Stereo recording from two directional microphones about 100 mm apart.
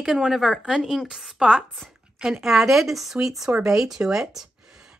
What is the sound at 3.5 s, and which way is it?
Speech, 15° right (ahead or behind).